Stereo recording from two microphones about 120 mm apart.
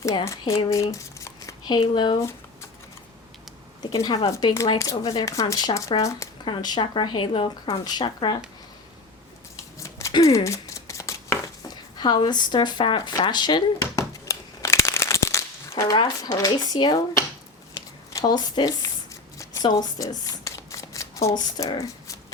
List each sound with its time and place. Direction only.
0.3 s speech: 25° left (ahead or behind)
0.7 s a sound: 25° left (ahead or behind)
1.6 s speech: 40° left (ahead or behind)
3.8 s speech: 35° left (ahead or behind)
6.4 s speech: 40° left (ahead or behind)
9.7 s a sound: 25° left (ahead or behind)
11.9 s a sound: 35° left (ahead or behind)
16.0 s speech: 35° left (ahead or behind)
17.7 s squish: 30° left (ahead or behind)
19.6 s shuffling cards: 35° left (ahead or behind)